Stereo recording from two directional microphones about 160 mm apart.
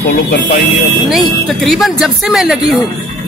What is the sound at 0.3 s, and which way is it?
Speech, 80° left.